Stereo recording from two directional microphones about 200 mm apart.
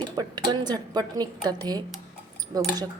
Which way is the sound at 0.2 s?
20° right (ahead or behind).